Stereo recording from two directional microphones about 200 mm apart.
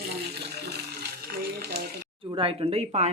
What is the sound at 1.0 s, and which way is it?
Water, 50° right (ahead or behind).